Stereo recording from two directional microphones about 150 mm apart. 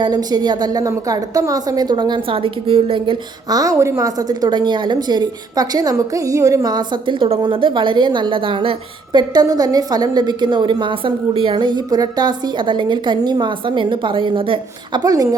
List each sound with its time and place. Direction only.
0.0 s a woman's voice: 25° right (ahead or behind)